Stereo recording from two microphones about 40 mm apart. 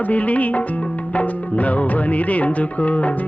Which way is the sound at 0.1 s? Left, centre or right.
Left.